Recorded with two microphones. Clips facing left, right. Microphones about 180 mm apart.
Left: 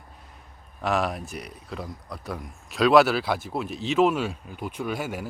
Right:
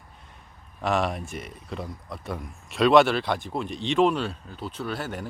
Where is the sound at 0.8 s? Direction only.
Centre (ahead or behind).